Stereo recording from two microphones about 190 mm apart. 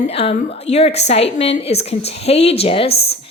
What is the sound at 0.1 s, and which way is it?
A woman's voice, 30° left (ahead or behind).